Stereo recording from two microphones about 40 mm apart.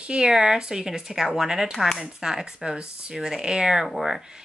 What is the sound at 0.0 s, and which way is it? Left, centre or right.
Speech, right.